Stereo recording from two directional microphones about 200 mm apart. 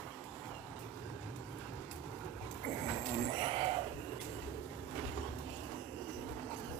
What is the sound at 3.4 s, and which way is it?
Sheep, 30° right (ahead or behind).